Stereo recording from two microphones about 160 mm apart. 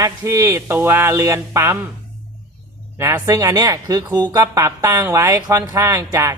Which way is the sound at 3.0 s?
20° right (ahead or behind).